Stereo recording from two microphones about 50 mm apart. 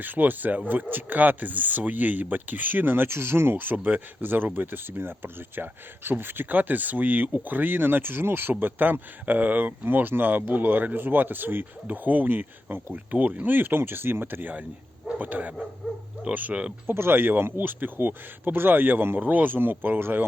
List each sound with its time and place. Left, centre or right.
0.0 s speech: right
15.2 s speech: right
16.8 s speech: right